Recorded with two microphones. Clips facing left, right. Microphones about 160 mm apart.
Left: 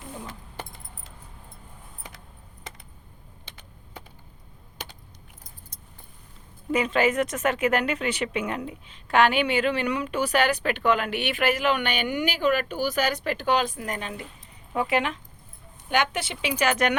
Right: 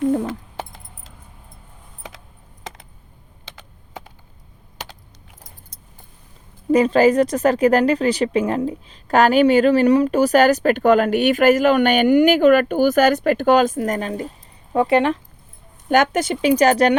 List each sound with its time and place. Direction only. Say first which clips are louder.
0.0 s keys jangling: right 19 dB; 65° right (ahead or behind); by 1.1 s 90° right
2.7 s computer keyboard: right 8 dB; 90° right
4.8 s keys jangling: right 5 dB; 90° right
6.7 s speech: right 9 dB; 35° right (ahead or behind)